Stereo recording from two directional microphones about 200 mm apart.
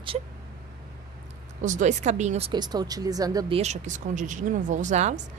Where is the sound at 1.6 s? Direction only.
40° right (ahead or behind).